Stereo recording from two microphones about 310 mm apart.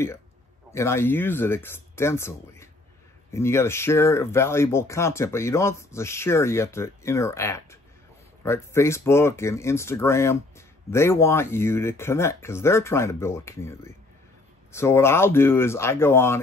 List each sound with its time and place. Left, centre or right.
0.7 s speech: centre